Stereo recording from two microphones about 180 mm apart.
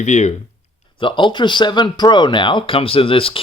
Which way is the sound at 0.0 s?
40° left (ahead or behind).